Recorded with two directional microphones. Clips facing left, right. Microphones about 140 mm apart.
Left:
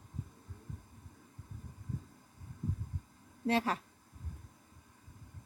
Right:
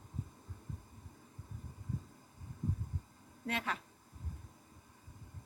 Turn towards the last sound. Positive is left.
turn(degrees=35)  # may be behind; listen again after turning